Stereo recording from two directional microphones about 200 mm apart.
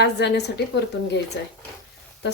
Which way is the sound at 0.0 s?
55° left (ahead or behind).